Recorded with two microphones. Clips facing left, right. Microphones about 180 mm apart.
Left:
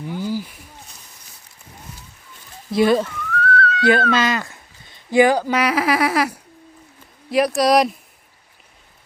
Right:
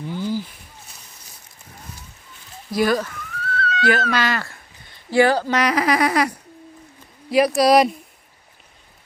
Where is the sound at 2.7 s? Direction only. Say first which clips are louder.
Left 3 dB; 25° left (ahead or behind).